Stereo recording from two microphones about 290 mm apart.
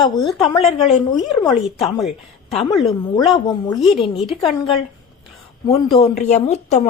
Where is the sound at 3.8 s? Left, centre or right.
Centre.